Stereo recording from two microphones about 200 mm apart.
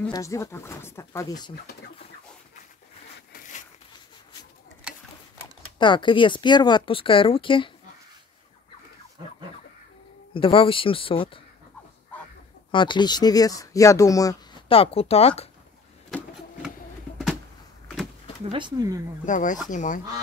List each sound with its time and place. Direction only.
0.1 s speech: 15° left (ahead or behind)
5.8 s speech: 25° left (ahead or behind)
10.3 s speech: 25° left (ahead or behind)
12.1 s chicken: 5° left (ahead or behind)
12.7 s speech: 25° left (ahead or behind)
14.7 s speech: 30° left (ahead or behind)
16.1 s printer: 5° left (ahead or behind)
18.4 s speech: 25° right (ahead or behind)
19.2 s speech: 40° left (ahead or behind)